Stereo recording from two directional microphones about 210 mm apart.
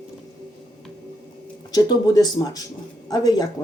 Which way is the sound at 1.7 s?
20° left (ahead or behind).